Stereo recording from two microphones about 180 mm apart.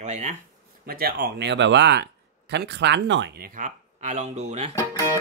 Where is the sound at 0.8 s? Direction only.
55° right (ahead or behind); by 4.7 s 40° right (ahead or behind).